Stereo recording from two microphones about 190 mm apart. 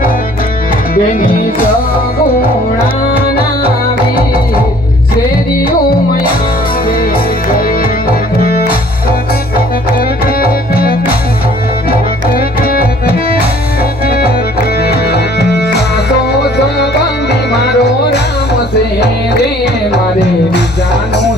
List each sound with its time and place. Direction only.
0.9 s music: 50° left (ahead or behind)
3.2 s music: 55° left (ahead or behind)
10.4 s music: 50° left (ahead or behind)
14.8 s music: 60° left (ahead or behind)